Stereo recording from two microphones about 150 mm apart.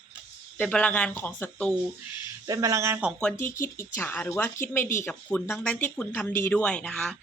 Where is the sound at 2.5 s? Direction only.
25° right (ahead or behind).